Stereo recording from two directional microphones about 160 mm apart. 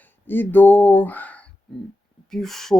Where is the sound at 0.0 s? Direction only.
10° left (ahead or behind).